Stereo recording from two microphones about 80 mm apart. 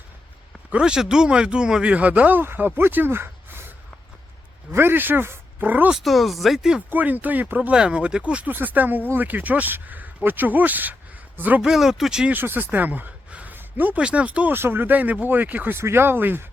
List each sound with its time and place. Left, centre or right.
0.7 s speech: centre; by 3.7 s right
4.7 s speech: right
5.9 s speech: centre
6.9 s speech: right
11.6 s speech: centre
12.3 s speech: right
14.5 s speech: right